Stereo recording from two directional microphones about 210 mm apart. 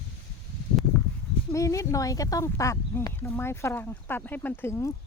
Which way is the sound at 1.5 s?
15° left (ahead or behind).